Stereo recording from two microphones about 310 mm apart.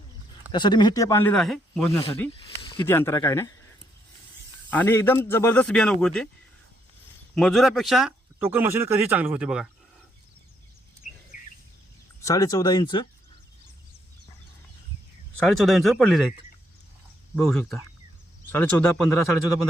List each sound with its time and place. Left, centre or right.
0.5 s speech: centre
2.6 s speech: centre
4.7 s speech: centre
7.3 s speech: centre
11.3 s bird: left
12.2 s speech: centre
15.4 s speech: centre
17.3 s speech: centre